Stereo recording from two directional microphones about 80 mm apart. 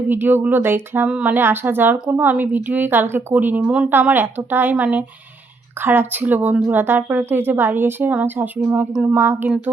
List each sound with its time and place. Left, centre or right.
0.1 s speech: right
3.8 s speech: right